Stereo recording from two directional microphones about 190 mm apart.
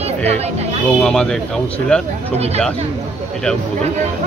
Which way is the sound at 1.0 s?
5° left (ahead or behind).